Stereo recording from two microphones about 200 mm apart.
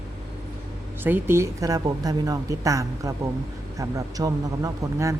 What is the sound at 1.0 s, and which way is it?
Speech, 10° right (ahead or behind).